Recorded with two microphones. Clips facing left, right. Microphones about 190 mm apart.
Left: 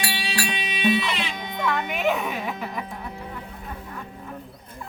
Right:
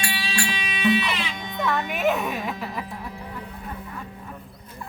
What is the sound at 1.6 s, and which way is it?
Music, centre (ahead or behind).